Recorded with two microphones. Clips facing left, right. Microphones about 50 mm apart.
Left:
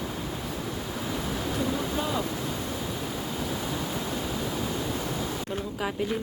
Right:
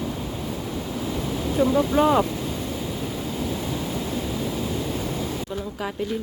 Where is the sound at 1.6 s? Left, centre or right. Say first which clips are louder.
Right 13 dB; right.